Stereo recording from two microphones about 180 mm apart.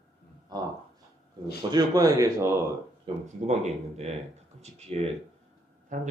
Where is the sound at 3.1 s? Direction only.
30° right (ahead or behind); by 6.1 s 45° right (ahead or behind).